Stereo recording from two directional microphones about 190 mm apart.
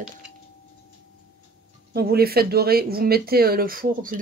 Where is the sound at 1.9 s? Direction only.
55° right (ahead or behind).